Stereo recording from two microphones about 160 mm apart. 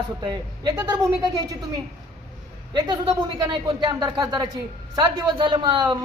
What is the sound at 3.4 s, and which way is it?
Speech, 30° right (ahead or behind).